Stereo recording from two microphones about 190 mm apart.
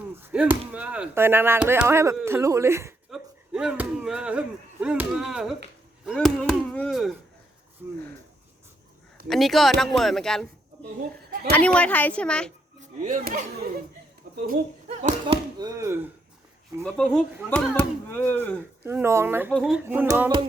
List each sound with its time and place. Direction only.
0.2 s chop: 10° right (ahead or behind)
0.7 s speech: 5° right (ahead or behind)
9.2 s speech: centre (ahead or behind)
11.3 s a sound: 50° right (ahead or behind)
11.5 s speech: 5° left (ahead or behind)
12.8 s speech: 40° right (ahead or behind)
15.5 s speech: 20° right (ahead or behind)
16.8 s speech: 5° left (ahead or behind)
18.9 s speech: 15° right (ahead or behind)
19.5 s speech: centre (ahead or behind)